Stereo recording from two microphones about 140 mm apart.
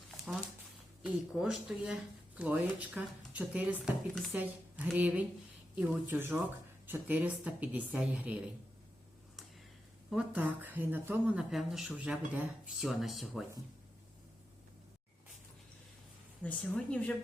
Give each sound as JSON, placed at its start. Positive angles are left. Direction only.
{"t": 1.0, "sound": "speech", "side_deg": -5}
{"t": 10.1, "sound": "speech", "side_deg": -10}
{"t": 11.5, "sound": "speech", "side_deg": 0}
{"t": 16.4, "sound": "a woman's voice", "side_deg": 10}